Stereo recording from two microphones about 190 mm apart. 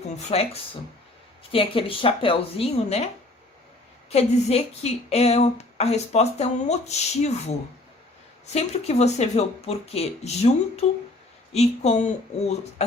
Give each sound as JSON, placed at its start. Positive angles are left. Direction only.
{"t": 0.3, "sound": "a woman's voice", "side_deg": 30}
{"t": 4.1, "sound": "a woman's voice", "side_deg": 35}
{"t": 8.5, "sound": "a woman's voice", "side_deg": 35}